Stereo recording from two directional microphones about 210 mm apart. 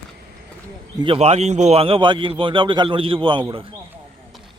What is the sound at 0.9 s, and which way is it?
A man's voice, 25° right (ahead or behind).